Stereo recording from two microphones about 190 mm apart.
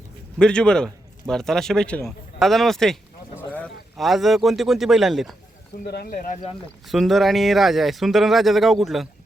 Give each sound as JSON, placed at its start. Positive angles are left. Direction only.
{"t": 0.3, "sound": "a man's voice", "side_deg": 5}
{"t": 5.8, "sound": "speech", "side_deg": 55}
{"t": 6.1, "sound": "speech", "side_deg": 40}
{"t": 6.8, "sound": "speech", "side_deg": 0}